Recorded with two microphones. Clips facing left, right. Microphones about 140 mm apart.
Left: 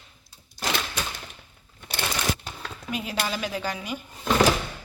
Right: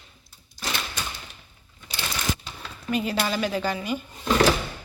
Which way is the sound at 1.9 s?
60° left (ahead or behind).